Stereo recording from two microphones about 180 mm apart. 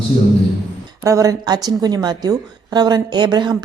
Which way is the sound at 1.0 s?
15° right (ahead or behind).